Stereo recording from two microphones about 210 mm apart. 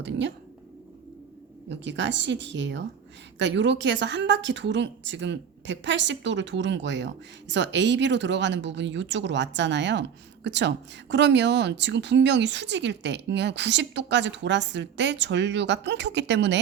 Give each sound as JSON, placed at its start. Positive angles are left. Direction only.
{"t": 0.0, "sound": "a woman's voice", "side_deg": -55}
{"t": 1.7, "sound": "a woman's voice", "side_deg": -60}